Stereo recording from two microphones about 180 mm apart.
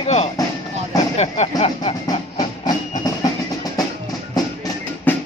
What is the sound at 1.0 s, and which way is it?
Speech, 35° left (ahead or behind).